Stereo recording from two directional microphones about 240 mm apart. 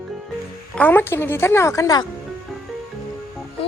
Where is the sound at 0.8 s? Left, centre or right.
Centre.